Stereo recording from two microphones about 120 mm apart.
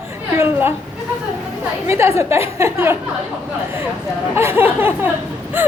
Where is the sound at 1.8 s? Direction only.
20° right (ahead or behind).